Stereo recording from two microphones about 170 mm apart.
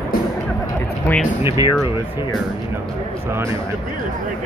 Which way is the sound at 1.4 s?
15° right (ahead or behind).